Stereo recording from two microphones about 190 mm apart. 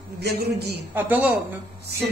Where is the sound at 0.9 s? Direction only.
10° right (ahead or behind).